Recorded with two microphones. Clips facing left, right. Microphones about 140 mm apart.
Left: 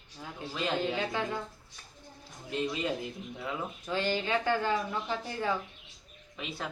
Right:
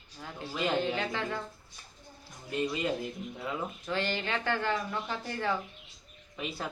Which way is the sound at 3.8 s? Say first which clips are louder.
Left 3 dB; 10° left (ahead or behind).